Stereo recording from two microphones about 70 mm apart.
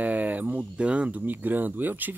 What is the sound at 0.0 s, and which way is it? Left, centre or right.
Speech, right.